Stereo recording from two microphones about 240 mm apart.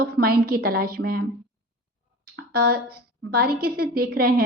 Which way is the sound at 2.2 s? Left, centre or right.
Right.